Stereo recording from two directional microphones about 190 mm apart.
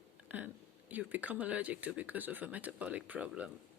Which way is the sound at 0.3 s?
10° right (ahead or behind).